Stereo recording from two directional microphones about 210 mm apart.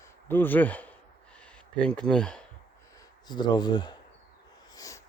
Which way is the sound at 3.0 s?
20° left (ahead or behind).